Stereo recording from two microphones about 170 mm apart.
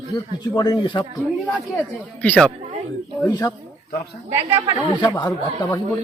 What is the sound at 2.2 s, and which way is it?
Speech, 5° left (ahead or behind).